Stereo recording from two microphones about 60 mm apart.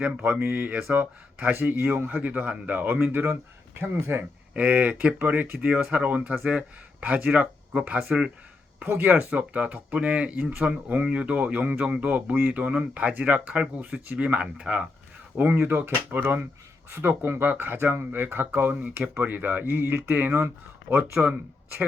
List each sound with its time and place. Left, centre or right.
0.0 s speech: right
4.5 s speech: right
7.3 s speech: centre
8.9 s speech: right; by 14.8 s centre
15.4 s speech: right
21.2 s speech: centre